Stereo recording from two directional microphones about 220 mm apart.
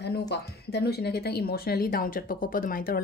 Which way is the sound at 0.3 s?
50° left (ahead or behind).